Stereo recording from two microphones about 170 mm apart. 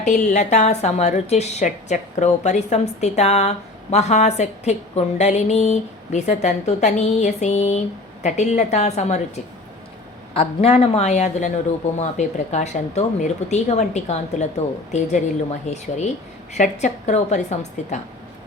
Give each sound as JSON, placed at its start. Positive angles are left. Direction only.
{"t": 0.0, "sound": "a woman's voice", "side_deg": 45}